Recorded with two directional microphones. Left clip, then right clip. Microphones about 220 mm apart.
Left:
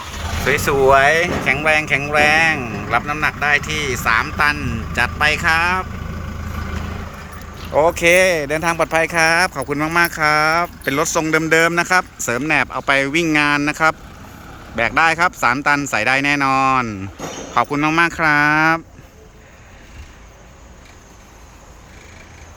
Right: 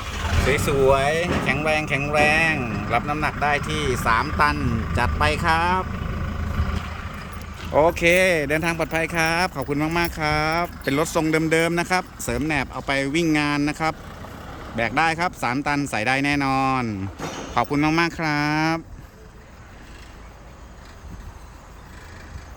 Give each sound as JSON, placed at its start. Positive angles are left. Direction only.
{"t": 0.4, "sound": "speech", "side_deg": 0}
{"t": 7.7, "sound": "speech", "side_deg": -5}
{"t": 17.2, "sound": "speech", "side_deg": 40}
{"t": 17.5, "sound": "speech", "side_deg": -5}